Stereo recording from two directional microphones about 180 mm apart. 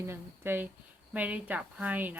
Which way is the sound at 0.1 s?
10° right (ahead or behind).